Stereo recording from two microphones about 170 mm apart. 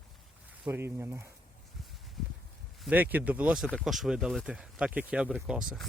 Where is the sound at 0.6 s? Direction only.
15° right (ahead or behind).